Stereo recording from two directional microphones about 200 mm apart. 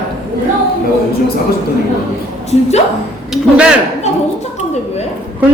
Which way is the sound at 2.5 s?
35° left (ahead or behind).